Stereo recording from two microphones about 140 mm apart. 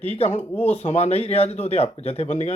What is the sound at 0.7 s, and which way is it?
Speech, 50° left (ahead or behind).